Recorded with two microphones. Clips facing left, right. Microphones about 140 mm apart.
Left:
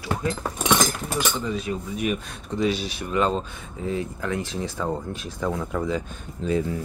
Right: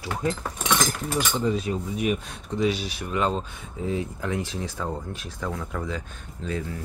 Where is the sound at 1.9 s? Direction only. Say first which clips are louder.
Even; 20° right (ahead or behind).